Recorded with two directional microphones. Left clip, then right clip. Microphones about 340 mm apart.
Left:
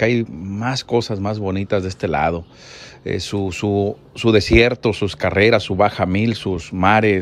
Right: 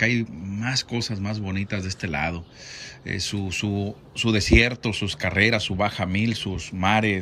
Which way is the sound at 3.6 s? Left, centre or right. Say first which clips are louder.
Left 10 dB; right.